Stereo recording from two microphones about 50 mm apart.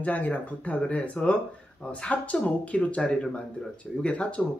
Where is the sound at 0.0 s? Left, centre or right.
Left.